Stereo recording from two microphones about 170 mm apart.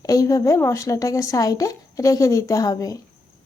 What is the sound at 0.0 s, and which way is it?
Speech, 20° left (ahead or behind).